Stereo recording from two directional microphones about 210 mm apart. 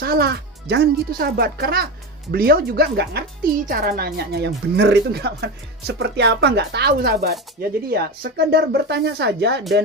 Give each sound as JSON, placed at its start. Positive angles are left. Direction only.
{"t": 0.0, "sound": "speech", "side_deg": -50}